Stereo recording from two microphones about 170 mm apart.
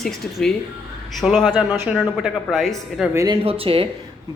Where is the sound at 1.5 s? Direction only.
10° right (ahead or behind).